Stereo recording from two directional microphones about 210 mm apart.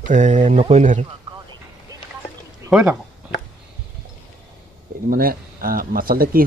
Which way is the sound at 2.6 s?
5° right (ahead or behind).